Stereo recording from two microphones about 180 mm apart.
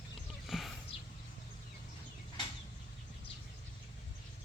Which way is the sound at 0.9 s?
30° left (ahead or behind).